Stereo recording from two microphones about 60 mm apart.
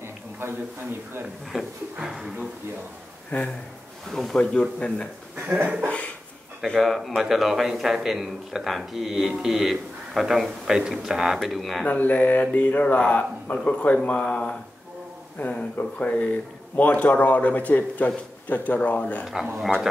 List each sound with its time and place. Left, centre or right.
1.5 s speech: centre
3.3 s speech: left
4.1 s a man's voice: centre
4.4 s speech: centre
6.6 s a man's voice: centre
11.8 s speech: left
19.6 s a man's voice: centre